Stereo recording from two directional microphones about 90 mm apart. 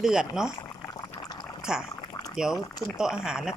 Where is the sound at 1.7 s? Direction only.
5° right (ahead or behind).